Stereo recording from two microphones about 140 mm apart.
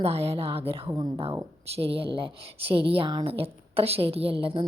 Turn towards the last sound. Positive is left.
turn(degrees=-40)  # may be behind; listen again after turning